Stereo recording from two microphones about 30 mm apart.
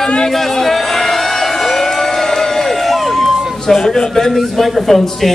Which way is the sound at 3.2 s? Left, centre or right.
Centre.